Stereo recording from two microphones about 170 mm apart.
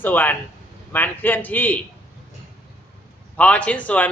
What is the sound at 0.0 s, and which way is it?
Speech, 10° left (ahead or behind).